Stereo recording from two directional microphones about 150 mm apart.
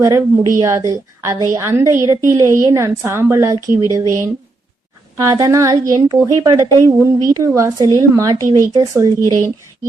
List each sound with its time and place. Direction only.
0.0 s a woman's voice: 20° right (ahead or behind)
5.1 s a woman's voice: 20° right (ahead or behind)